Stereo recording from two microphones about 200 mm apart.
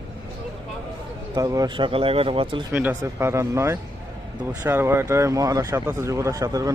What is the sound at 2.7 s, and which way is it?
Speech, 10° right (ahead or behind).